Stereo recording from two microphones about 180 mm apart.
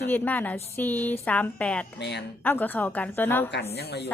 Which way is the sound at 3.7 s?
65° left (ahead or behind).